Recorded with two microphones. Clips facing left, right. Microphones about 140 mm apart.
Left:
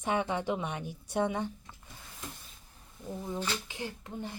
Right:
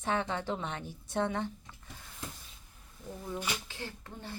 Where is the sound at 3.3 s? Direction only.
15° right (ahead or behind).